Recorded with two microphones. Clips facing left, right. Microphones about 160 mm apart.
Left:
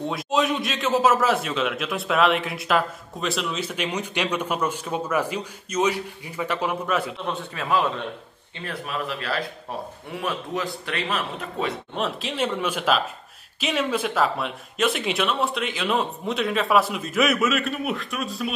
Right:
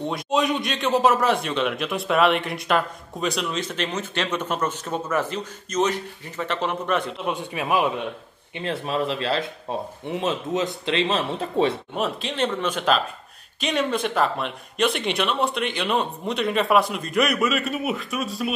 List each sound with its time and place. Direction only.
0.0 s a man's voice: centre (ahead or behind)
7.2 s a man's voice: 15° right (ahead or behind)
8.5 s speech: 25° right (ahead or behind)
11.9 s a man's voice: centre (ahead or behind)